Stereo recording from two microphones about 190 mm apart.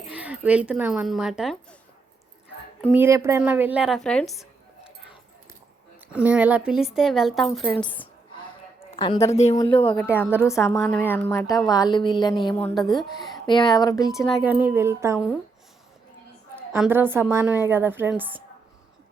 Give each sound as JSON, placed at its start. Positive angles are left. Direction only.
{"t": 0.1, "sound": "speech", "side_deg": -5}
{"t": 2.9, "sound": "speech", "side_deg": -10}
{"t": 6.1, "sound": "a woman's voice", "side_deg": -5}
{"t": 9.0, "sound": "a woman's voice", "side_deg": 25}
{"t": 9.9, "sound": "a woman's voice", "side_deg": 10}
{"t": 12.8, "sound": "a woman's voice", "side_deg": 0}
{"t": 13.5, "sound": "speech", "side_deg": 20}
{"t": 14.3, "sound": "a woman's voice", "side_deg": -10}
{"t": 16.8, "sound": "a woman's voice", "side_deg": -10}